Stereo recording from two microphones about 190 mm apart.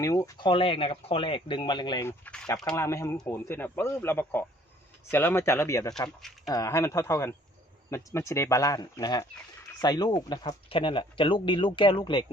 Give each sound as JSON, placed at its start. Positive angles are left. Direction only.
{"t": 0.0, "sound": "speech", "side_deg": 15}